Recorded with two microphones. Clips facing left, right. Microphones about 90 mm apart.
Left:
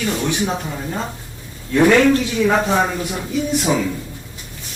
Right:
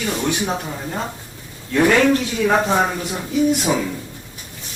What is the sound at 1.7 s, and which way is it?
Speech, 10° left (ahead or behind).